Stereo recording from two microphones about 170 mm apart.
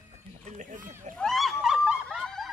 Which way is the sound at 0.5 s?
50° right (ahead or behind).